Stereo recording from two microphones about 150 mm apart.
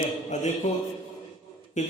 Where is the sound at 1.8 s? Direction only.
55° left (ahead or behind).